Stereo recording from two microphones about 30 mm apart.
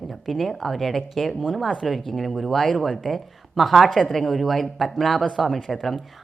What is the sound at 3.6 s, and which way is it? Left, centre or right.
Speech, centre.